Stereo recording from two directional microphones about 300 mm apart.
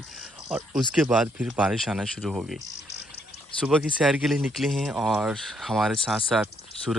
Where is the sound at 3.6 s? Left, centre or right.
Centre.